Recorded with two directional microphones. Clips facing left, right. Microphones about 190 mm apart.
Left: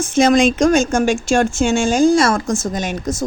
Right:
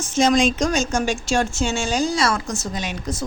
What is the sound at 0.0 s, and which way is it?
A woman's voice, 55° left (ahead or behind).